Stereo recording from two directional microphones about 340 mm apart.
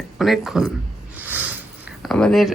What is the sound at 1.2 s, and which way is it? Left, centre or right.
Sniff, centre.